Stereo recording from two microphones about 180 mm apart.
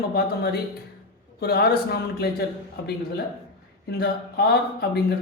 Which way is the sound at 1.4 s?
60° left (ahead or behind).